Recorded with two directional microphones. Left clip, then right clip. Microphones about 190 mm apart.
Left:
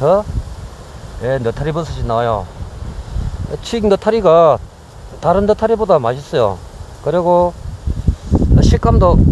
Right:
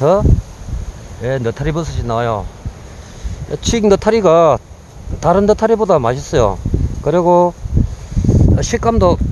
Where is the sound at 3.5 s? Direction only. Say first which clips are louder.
Right 2 dB; 35° right (ahead or behind).